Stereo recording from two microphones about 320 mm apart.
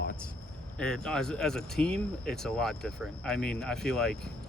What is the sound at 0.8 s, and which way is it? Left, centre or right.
Speech, centre.